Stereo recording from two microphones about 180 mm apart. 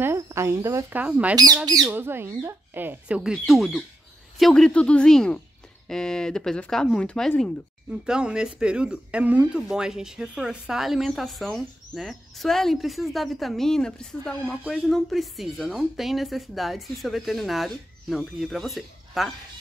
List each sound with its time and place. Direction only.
0.0 s speech: 15° right (ahead or behind)
1.3 s speech: 20° right (ahead or behind); by 19.3 s centre (ahead or behind)